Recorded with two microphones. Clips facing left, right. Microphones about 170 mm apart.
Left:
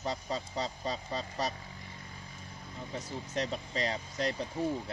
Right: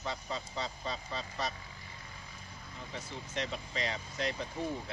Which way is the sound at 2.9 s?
40° left (ahead or behind).